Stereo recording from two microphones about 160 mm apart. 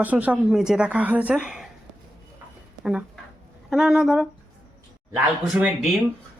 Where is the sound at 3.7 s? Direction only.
Centre (ahead or behind).